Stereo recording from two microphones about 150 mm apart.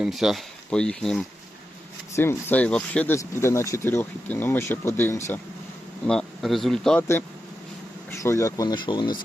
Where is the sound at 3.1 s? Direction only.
20° left (ahead or behind).